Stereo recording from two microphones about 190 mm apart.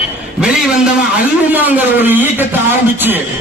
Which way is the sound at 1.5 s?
10° right (ahead or behind).